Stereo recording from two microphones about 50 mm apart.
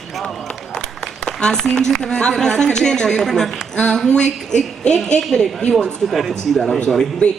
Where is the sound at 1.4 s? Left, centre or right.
Centre.